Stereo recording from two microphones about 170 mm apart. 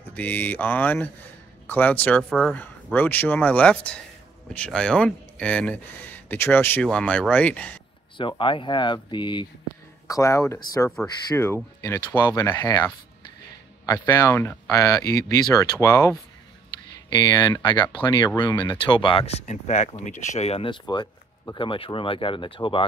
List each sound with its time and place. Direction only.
0.1 s speech: 10° left (ahead or behind)
2.6 s speech: 10° left (ahead or behind)
8.2 s speech: 30° left (ahead or behind)
20.8 s speech: 25° left (ahead or behind)